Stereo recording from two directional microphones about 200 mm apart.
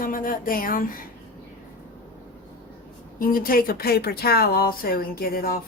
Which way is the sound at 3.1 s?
45° left (ahead or behind).